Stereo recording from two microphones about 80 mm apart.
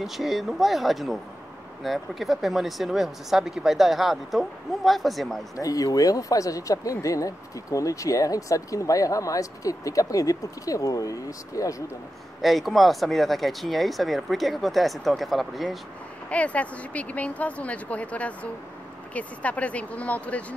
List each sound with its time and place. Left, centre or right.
0.0 s speech: centre
5.6 s speech: left
12.4 s speech: centre
16.3 s speech: centre